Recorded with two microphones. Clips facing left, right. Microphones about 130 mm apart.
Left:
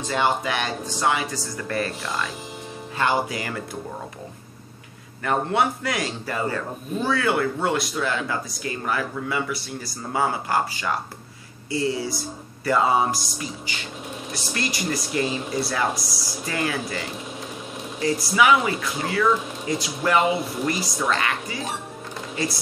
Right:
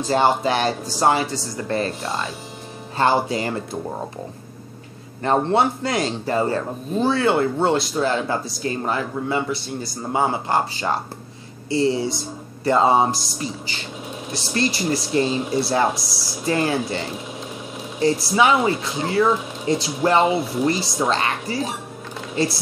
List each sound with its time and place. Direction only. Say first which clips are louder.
0.0 s speech: right 5 dB; 35° right (ahead or behind)
5.2 s speech: right 4 dB; 30° right (ahead or behind)
15.9 s speech: right 1 dB; centre (ahead or behind)
16.4 s speech: right 6 dB; 30° right (ahead or behind)
18.2 s speech: left 1 dB; 30° right (ahead or behind)